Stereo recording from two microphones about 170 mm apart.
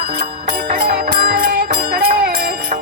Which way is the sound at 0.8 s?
65° right (ahead or behind).